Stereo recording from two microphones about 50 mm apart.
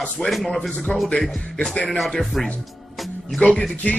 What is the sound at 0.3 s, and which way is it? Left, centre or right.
Music, centre.